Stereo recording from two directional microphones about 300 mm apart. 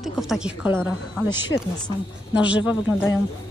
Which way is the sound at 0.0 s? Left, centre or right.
Centre.